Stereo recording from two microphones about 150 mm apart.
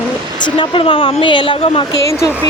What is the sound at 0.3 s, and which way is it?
A woman's voice, 30° left (ahead or behind).